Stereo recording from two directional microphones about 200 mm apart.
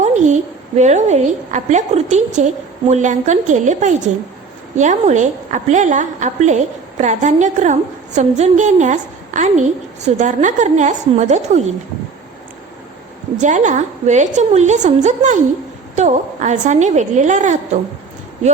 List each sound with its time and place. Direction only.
0.0 s a sound: 35° right (ahead or behind)
0.8 s a woman's voice: 35° right (ahead or behind)
13.4 s a woman's voice: 40° right (ahead or behind)